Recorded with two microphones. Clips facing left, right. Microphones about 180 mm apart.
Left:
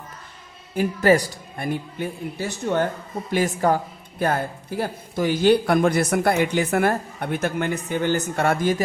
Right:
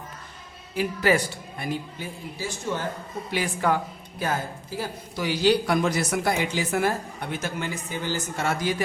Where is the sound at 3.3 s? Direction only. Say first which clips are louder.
Left 4 dB; 45° left (ahead or behind).